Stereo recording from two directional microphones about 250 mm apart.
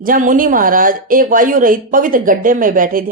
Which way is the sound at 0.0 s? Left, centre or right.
Right.